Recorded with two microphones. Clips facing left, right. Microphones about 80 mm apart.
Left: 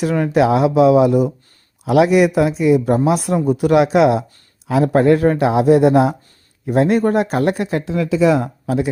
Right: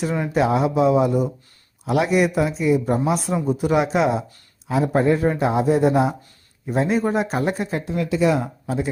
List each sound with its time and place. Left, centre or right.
0.0 s speech: left
6.7 s speech: left